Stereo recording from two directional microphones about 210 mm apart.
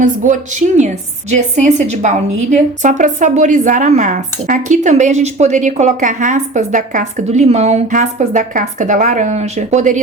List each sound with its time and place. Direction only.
0.0 s a woman's voice: 35° right (ahead or behind)